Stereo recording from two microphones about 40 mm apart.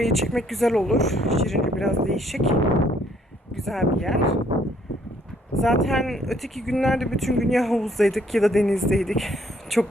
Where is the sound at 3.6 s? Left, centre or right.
Centre.